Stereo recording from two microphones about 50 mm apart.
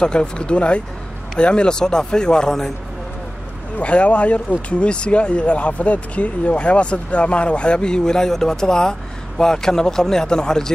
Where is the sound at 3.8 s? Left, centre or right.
Left.